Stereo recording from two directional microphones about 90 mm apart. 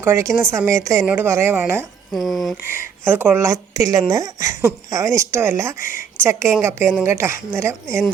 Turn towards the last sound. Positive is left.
turn(degrees=-30)  # may be behind; listen again after turning